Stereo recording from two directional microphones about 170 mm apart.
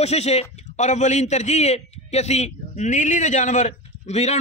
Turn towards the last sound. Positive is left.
turn(degrees=40)  # may be behind; listen again after turning